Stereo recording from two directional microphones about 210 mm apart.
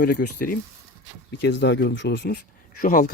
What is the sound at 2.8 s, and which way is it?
Speech, 40° left (ahead or behind).